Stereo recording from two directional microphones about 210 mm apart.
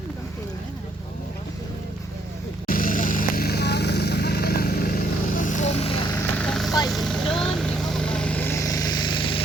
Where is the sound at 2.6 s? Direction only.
40° left (ahead or behind).